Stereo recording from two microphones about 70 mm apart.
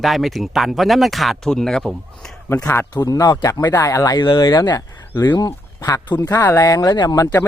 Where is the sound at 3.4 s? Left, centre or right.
Left.